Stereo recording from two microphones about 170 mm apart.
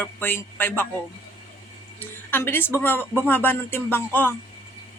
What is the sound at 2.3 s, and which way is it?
Speech, 10° left (ahead or behind).